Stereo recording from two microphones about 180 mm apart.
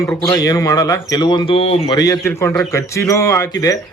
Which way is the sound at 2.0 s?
15° left (ahead or behind).